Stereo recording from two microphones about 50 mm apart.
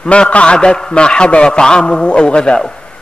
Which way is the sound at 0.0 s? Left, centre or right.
Left.